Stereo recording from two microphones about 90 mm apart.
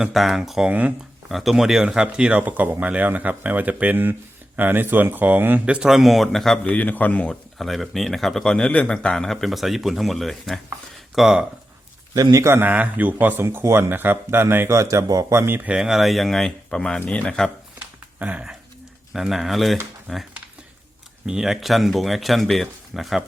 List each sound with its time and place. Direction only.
0.0 s speech: 5° right (ahead or behind)
0.7 s speech: 15° right (ahead or behind)
1.3 s speech: centre (ahead or behind)
6.7 s speech: 20° left (ahead or behind)
7.6 s speech: centre (ahead or behind)
12.1 s speech: 40° right (ahead or behind); by 15.7 s 25° right (ahead or behind)
15.7 s speech: 5° right (ahead or behind)
18.2 s speech: 15° right (ahead or behind)
19.1 s speech: 5° right (ahead or behind)
21.2 s speech: 5° right (ahead or behind)